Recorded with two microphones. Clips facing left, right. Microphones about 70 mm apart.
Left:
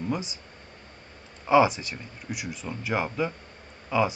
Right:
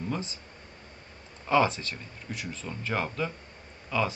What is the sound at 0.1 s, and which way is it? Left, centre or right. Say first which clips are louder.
Speech: left 4 dB; centre.